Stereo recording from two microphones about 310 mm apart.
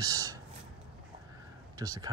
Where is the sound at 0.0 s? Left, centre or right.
Centre.